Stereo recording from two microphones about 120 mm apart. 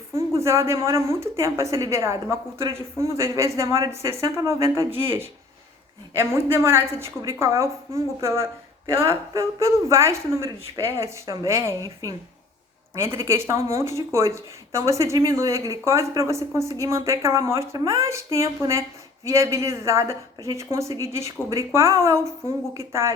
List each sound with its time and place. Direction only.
0.1 s speech: 25° right (ahead or behind)